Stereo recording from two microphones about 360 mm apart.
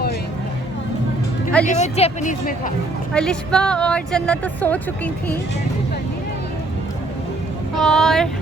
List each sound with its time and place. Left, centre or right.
1.6 s a woman's voice: centre
3.1 s speech: centre
7.8 s speech: centre